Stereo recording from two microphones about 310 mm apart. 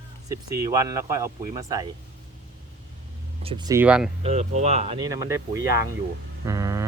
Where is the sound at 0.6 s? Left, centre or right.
Centre.